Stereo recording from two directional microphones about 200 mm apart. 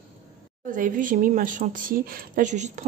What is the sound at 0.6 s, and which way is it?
A woman's voice, 40° right (ahead or behind).